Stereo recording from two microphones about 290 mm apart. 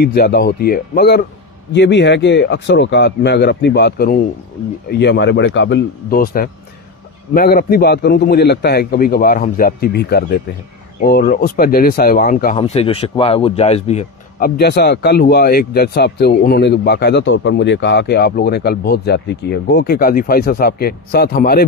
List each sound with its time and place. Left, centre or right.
0.0 s a man's voice: left
14.6 s a man's voice: left